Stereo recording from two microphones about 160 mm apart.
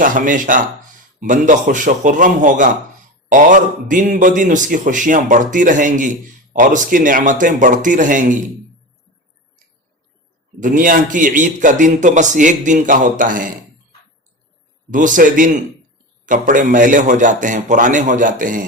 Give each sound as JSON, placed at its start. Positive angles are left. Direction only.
{"t": 0.0, "sound": "a man's voice", "side_deg": -55}
{"t": 10.6, "sound": "a man's voice", "side_deg": -55}
{"t": 14.8, "sound": "a man's voice", "side_deg": -55}